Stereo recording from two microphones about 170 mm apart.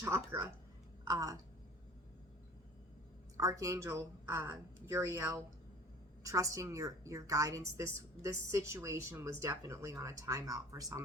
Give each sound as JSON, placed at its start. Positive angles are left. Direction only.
{"t": 0.0, "sound": "a woman's voice", "side_deg": -15}
{"t": 3.3, "sound": "a woman's voice", "side_deg": -20}